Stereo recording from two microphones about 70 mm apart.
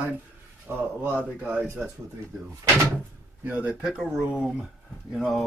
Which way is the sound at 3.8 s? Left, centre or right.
Centre.